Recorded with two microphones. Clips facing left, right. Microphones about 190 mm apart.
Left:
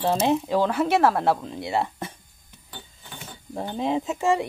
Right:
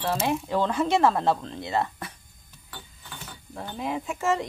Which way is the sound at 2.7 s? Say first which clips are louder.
Left 1 dB; 25° left (ahead or behind).